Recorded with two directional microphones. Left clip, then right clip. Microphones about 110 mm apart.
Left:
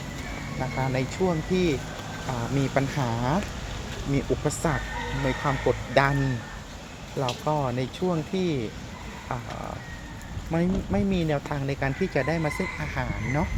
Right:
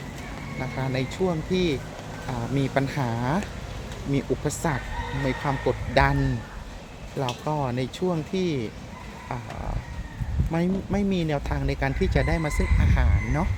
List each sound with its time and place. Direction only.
0.6 s speech: 15° right (ahead or behind)
7.2 s speech: 35° right (ahead or behind)
10.5 s speech: 35° right (ahead or behind)